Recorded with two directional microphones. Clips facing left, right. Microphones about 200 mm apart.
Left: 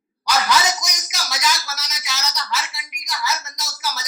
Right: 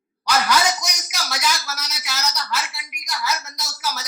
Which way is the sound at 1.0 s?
10° right (ahead or behind).